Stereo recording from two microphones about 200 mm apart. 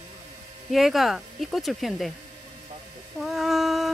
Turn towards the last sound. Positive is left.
turn(degrees=0)  # may be behind; listen again after turning